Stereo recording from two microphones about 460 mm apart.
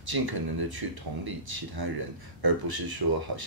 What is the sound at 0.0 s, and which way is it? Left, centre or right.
Speech, right.